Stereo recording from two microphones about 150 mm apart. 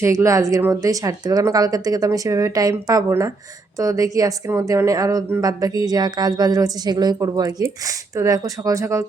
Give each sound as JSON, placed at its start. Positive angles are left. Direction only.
{"t": 0.0, "sound": "speech", "side_deg": -20}